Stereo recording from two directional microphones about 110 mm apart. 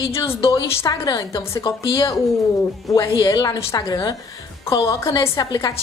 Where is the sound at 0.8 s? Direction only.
35° left (ahead or behind).